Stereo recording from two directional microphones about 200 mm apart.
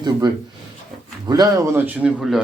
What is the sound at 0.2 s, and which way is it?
Speech, 20° right (ahead or behind).